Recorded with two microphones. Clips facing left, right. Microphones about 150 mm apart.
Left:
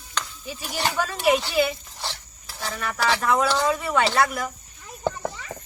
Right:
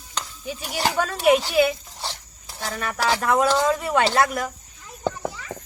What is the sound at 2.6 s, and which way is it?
Speech, 40° right (ahead or behind).